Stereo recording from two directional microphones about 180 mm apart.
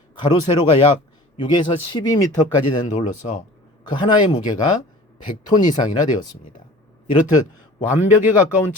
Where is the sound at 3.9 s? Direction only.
25° left (ahead or behind).